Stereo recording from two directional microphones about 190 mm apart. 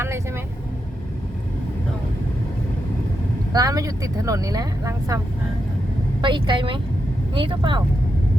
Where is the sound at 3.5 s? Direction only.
20° right (ahead or behind).